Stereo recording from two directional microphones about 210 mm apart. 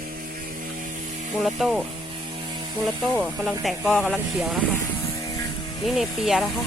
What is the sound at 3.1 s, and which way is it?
Speech, centre (ahead or behind).